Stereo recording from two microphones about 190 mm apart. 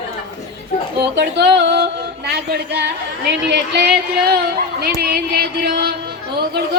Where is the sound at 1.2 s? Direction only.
65° right (ahead or behind).